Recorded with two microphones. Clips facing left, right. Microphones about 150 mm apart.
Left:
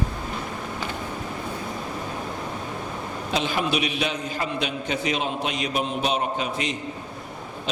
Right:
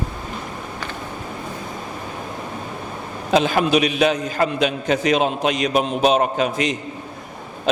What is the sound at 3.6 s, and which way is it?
A man's voice, 90° right.